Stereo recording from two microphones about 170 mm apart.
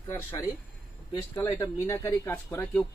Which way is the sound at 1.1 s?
25° left (ahead or behind).